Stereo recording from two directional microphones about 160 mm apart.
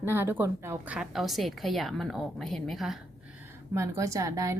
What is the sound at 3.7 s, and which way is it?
Speech, 20° right (ahead or behind).